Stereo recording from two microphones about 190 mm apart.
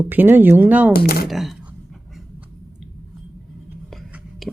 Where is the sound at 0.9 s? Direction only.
55° left (ahead or behind).